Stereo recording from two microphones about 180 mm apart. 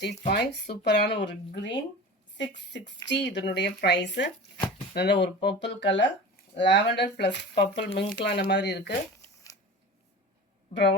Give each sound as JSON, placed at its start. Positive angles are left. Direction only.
{"t": 0.3, "sound": "speech", "side_deg": 65}